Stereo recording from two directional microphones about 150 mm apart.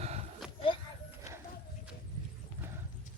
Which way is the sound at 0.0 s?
45° right (ahead or behind).